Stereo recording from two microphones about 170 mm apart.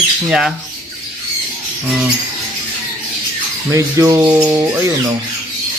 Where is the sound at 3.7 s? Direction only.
15° right (ahead or behind).